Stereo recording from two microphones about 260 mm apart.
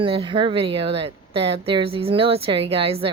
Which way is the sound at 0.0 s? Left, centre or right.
Centre.